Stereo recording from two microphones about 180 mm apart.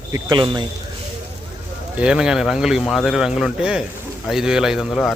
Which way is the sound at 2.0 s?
5° right (ahead or behind).